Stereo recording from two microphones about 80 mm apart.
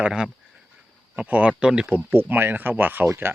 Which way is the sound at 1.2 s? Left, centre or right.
Centre.